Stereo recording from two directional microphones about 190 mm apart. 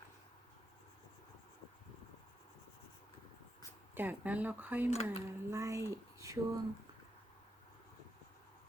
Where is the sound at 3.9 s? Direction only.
10° right (ahead or behind).